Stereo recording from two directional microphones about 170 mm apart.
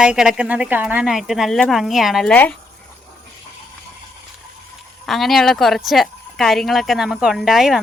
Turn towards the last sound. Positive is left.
turn(degrees=-5)  # may be behind; listen again after turning